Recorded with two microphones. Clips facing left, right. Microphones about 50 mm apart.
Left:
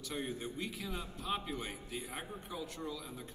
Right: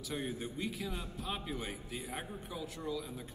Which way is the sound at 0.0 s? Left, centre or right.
Centre.